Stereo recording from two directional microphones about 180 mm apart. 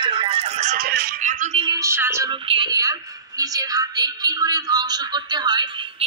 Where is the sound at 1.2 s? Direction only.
45° right (ahead or behind).